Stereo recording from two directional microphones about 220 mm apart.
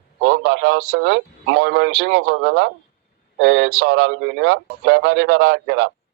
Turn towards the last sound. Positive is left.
turn(degrees=-55)  # may be behind; listen again after turning